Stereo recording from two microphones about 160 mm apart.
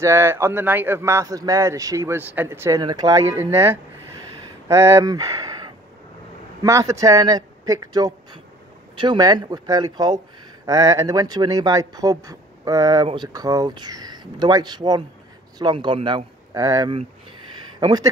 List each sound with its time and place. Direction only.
0.0 s speech: 15° right (ahead or behind); by 16.3 s 30° right (ahead or behind)
16.5 s speech: 20° right (ahead or behind)